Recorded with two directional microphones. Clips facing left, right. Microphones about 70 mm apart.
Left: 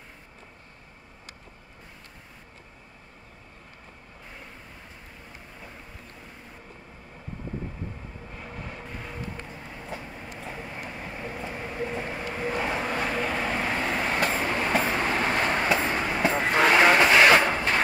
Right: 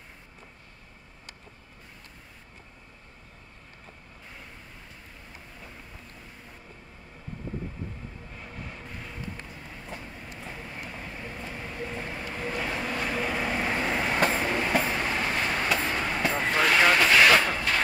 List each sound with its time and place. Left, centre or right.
8.3 s vehicle: centre
9.6 s train: centre
12.5 s vehicle: left
13.1 s vehicle: centre
14.4 s train: centre
14.8 s vehicle: left
15.6 s vehicle: left
16.6 s vehicle: left